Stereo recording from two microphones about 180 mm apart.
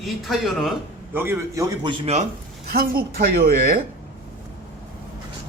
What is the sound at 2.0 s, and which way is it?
Speech, 35° right (ahead or behind).